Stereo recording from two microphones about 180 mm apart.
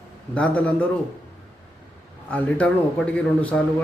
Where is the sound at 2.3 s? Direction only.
10° left (ahead or behind).